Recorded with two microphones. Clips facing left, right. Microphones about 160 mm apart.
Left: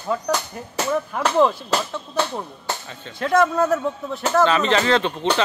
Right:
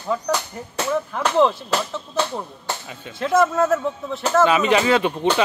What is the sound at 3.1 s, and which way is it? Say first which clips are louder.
Speech: even; centre (ahead or behind).